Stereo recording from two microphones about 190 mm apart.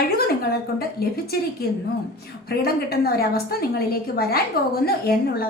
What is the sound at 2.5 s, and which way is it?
A woman's voice, 55° left (ahead or behind).